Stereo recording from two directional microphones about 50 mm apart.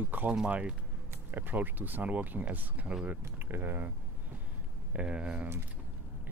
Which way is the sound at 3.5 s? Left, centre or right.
Right.